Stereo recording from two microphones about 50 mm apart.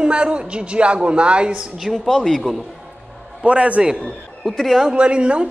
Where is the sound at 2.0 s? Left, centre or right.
Centre.